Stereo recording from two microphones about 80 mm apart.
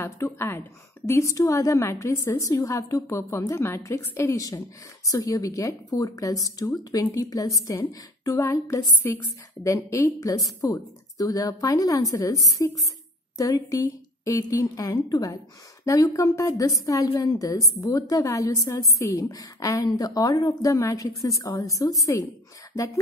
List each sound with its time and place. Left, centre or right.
0.0 s a woman's voice: left
5.0 s a woman's voice: left
15.8 s a woman's voice: left